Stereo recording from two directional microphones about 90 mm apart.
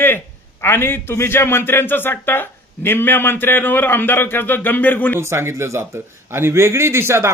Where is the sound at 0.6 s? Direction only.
25° left (ahead or behind).